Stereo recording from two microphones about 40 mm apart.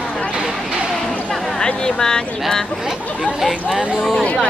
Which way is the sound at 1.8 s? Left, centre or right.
Centre.